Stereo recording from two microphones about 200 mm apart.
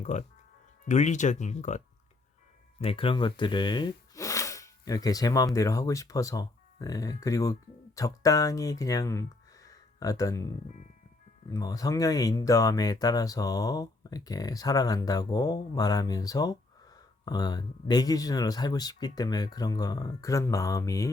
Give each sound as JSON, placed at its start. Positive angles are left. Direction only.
{"t": 0.0, "sound": "speech", "side_deg": 35}
{"t": 2.8, "sound": "speech", "side_deg": 25}
{"t": 9.6, "sound": "a sound", "side_deg": 15}
{"t": 11.5, "sound": "speech", "side_deg": 20}